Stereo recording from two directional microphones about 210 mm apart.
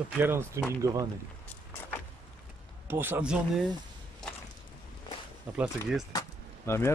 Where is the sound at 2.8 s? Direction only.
10° right (ahead or behind).